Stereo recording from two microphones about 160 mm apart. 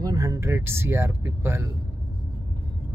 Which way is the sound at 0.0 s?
20° right (ahead or behind).